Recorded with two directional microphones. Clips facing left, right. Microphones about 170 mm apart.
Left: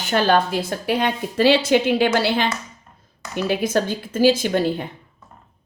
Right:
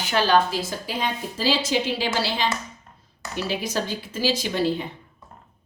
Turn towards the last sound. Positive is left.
turn(degrees=50)  # may be behind; listen again after turning